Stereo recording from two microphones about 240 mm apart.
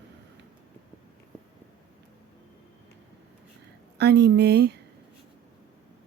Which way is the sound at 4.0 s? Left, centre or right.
Right.